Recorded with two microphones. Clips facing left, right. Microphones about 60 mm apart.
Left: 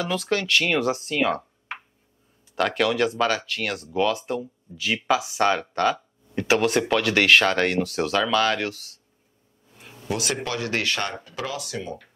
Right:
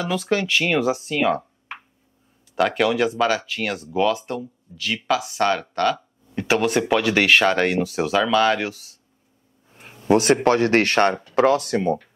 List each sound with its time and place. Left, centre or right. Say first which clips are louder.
0.0 s speech: right 3 dB; centre
2.5 s speech: right 3 dB; centre
6.4 s speech: right 1 dB; centre
9.8 s speech: right 11 dB; right